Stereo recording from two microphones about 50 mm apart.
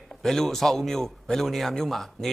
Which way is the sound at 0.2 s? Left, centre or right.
Centre.